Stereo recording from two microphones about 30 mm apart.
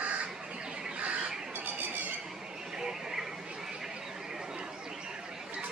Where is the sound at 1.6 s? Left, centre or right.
Right.